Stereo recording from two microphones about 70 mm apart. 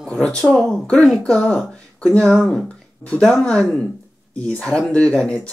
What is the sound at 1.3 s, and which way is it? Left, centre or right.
A woman's voice, centre.